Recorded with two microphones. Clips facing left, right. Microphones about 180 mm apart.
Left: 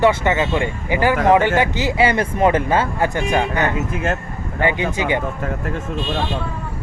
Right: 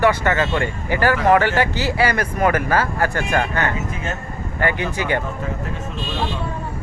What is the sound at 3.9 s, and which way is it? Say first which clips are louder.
Speech: left 6 dB; 55° left (ahead or behind).